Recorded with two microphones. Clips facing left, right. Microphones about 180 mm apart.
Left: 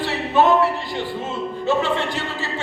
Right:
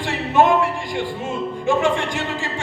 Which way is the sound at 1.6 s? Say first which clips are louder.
Right 2 dB; 15° right (ahead or behind).